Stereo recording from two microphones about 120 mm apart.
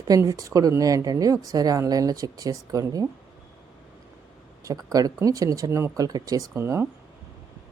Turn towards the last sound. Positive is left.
turn(degrees=-20)  # may be behind; listen again after turning